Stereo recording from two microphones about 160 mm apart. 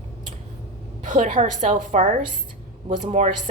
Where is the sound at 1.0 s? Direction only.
50° right (ahead or behind).